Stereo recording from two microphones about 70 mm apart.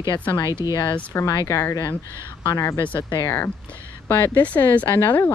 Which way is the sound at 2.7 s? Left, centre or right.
Left.